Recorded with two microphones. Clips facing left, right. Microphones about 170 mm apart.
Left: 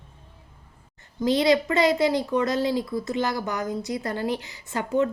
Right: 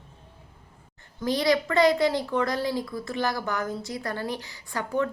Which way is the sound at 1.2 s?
20° left (ahead or behind).